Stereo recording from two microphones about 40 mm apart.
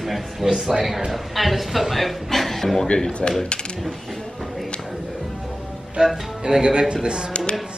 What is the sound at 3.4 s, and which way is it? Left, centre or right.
Coin, left.